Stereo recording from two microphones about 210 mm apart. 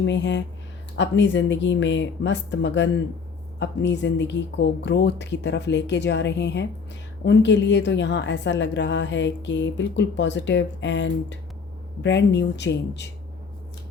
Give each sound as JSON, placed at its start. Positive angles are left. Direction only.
{"t": 0.0, "sound": "a woman's voice", "side_deg": 60}